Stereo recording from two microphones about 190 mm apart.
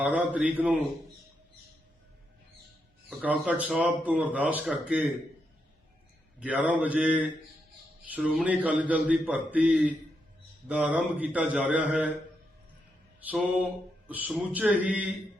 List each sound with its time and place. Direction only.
0.0 s a man's voice: 5° right (ahead or behind)
3.1 s a man's voice: 5° right (ahead or behind)
6.4 s a man's voice: 5° right (ahead or behind)
13.3 s a man's voice: 5° right (ahead or behind)